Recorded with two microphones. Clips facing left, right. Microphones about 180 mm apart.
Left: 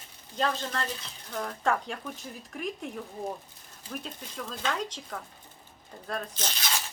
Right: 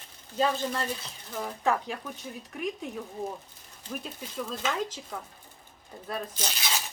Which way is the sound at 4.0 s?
5° right (ahead or behind).